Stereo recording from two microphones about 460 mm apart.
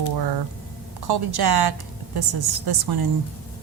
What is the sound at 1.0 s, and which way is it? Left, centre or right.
Speech, right.